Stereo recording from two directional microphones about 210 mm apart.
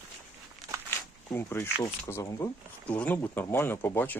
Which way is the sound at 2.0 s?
15° left (ahead or behind).